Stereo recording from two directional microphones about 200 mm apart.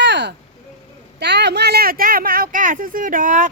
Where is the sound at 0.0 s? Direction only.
60° right (ahead or behind); by 3.5 s 40° right (ahead or behind).